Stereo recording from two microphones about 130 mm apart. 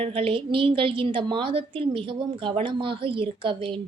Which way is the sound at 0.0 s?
45° right (ahead or behind).